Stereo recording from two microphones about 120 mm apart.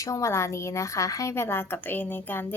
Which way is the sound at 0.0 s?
25° left (ahead or behind).